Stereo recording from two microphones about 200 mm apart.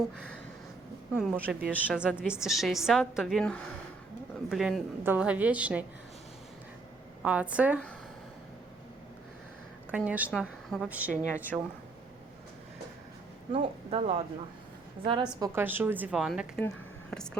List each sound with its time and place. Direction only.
1.1 s a woman's voice: centre (ahead or behind)
7.2 s a woman's voice: 5° right (ahead or behind)
9.9 s a woman's voice: 5° right (ahead or behind)
13.5 s speech: 30° right (ahead or behind)
15.4 s a woman's voice: 10° right (ahead or behind)